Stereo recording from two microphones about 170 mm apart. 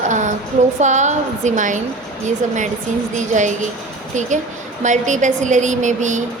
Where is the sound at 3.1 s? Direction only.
45° right (ahead or behind).